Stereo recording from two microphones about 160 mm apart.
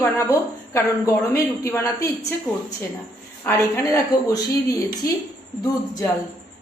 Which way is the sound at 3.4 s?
15° left (ahead or behind).